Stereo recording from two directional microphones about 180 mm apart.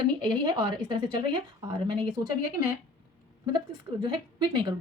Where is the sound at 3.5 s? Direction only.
25° right (ahead or behind).